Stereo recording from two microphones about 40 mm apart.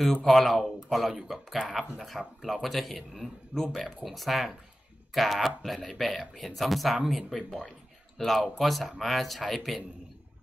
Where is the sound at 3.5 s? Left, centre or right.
Right.